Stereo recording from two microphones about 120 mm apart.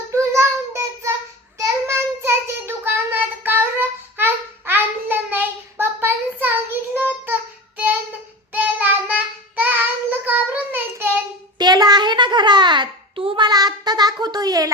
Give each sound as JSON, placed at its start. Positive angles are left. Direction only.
{"t": 0.1, "sound": "child singing", "side_deg": -25}
{"t": 8.5, "sound": "child singing", "side_deg": -10}
{"t": 11.5, "sound": "babbling", "side_deg": -35}